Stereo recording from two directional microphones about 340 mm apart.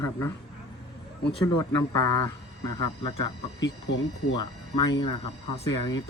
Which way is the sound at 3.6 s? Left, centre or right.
Left.